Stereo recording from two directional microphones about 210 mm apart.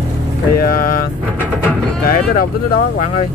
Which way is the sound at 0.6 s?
45° left (ahead or behind).